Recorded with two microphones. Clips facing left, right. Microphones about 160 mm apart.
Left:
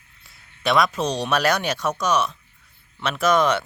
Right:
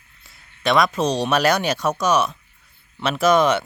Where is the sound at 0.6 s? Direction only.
Centre (ahead or behind).